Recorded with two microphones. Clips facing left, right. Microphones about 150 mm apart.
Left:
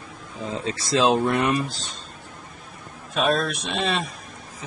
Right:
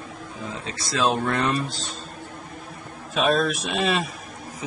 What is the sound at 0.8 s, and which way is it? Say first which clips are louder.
Speech: left 3 dB; 20° left (ahead or behind).